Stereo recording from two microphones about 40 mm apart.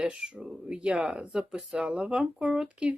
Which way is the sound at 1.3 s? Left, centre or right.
Centre.